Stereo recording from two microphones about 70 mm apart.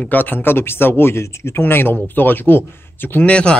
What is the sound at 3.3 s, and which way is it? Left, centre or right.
Speech, centre.